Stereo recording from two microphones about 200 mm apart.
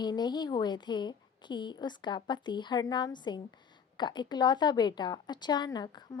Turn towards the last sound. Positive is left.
turn(degrees=20)  # may be behind; listen again after turning